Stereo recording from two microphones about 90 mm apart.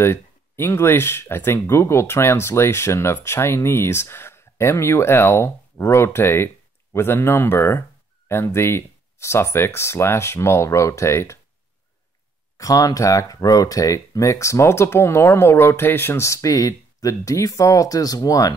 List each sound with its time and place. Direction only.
0.0 s speech: 30° left (ahead or behind)
12.5 s speech: 40° left (ahead or behind)